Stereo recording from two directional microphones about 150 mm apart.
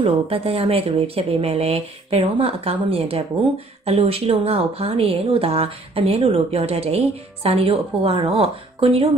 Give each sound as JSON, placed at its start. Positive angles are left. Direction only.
{"t": 0.0, "sound": "speech", "side_deg": -40}